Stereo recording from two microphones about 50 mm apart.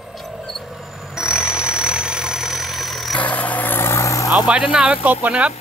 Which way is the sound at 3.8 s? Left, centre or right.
Left.